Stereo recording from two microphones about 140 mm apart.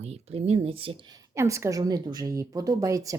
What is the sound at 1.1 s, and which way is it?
A woman's voice, 20° right (ahead or behind).